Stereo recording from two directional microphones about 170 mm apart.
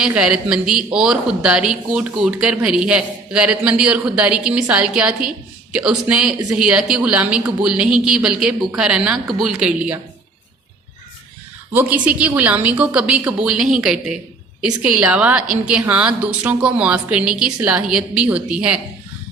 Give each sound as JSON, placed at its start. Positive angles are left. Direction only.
{"t": 0.0, "sound": "a woman's voice", "side_deg": -5}
{"t": 11.7, "sound": "a woman's voice", "side_deg": -10}